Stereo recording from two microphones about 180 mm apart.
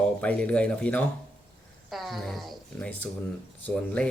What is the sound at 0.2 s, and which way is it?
Speech, 5° left (ahead or behind).